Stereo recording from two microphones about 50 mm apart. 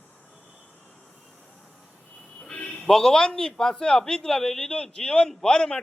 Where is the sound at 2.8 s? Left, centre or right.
Centre.